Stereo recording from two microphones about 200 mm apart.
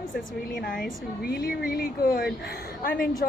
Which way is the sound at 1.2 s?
50° left (ahead or behind).